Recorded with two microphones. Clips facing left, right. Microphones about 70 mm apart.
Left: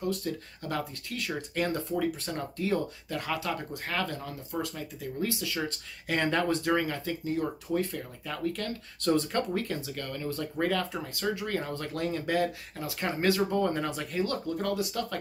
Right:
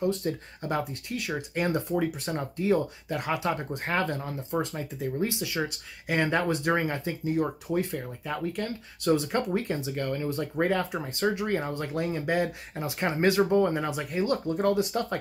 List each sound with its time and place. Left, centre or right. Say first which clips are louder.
0.0 s speech: right 4 dB; right
1.1 s speech: right 2 dB; centre
6.5 s speech: right 1 dB; right